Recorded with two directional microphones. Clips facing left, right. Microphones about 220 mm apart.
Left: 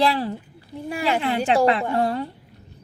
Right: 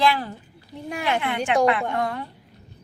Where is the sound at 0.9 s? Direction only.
5° left (ahead or behind).